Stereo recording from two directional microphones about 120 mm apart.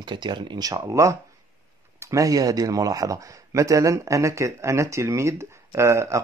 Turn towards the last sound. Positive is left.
turn(degrees=-25)  # may be behind; listen again after turning